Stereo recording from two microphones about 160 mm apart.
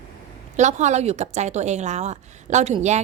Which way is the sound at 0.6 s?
45° right (ahead or behind).